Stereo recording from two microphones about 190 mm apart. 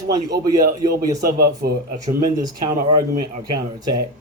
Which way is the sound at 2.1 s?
20° right (ahead or behind).